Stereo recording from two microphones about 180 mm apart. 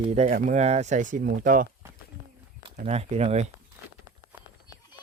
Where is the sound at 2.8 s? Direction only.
35° right (ahead or behind).